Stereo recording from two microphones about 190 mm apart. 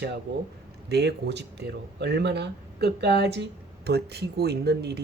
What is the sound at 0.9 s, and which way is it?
Speech, 60° right (ahead or behind).